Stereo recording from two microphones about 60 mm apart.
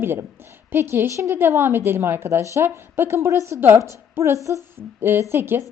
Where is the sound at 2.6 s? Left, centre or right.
Right.